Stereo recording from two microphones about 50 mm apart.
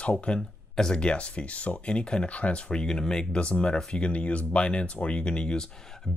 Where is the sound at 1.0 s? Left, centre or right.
Left.